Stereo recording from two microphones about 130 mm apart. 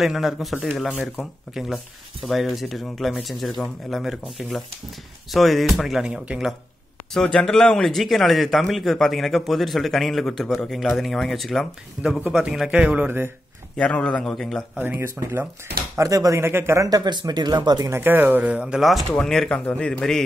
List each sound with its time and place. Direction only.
0.0 s speech: centre (ahead or behind)
7.2 s speech: 5° left (ahead or behind); by 13.3 s 15° right (ahead or behind)
13.7 s a man's voice: 10° left (ahead or behind)
14.8 s speech: 15° right (ahead or behind); by 20.2 s 5° left (ahead or behind)